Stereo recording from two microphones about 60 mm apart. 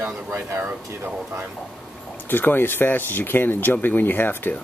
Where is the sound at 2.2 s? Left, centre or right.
Left.